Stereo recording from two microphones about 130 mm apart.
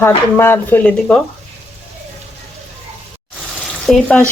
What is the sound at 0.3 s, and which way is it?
Speech, 15° left (ahead or behind).